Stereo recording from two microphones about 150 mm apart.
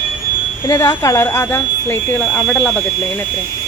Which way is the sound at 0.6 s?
20° left (ahead or behind).